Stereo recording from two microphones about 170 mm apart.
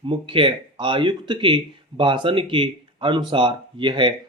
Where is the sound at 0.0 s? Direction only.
30° right (ahead or behind).